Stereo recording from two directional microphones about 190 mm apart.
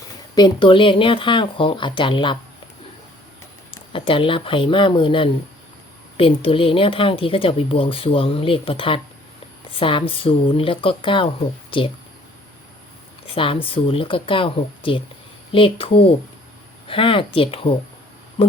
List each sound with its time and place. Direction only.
0.3 s speech: 25° left (ahead or behind)
3.7 s speech: 25° left (ahead or behind)
13.3 s speech: 30° left (ahead or behind)
18.4 s a sound: 30° left (ahead or behind)